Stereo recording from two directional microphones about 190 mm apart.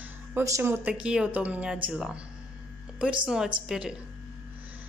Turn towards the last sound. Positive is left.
turn(degrees=-5)  # may be behind; listen again after turning